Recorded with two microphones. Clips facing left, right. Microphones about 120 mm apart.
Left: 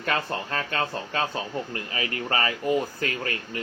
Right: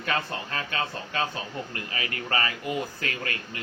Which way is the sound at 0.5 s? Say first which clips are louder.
Left 3 dB; 45° left (ahead or behind).